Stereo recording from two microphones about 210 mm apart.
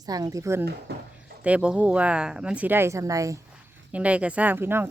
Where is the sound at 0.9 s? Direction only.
50° right (ahead or behind).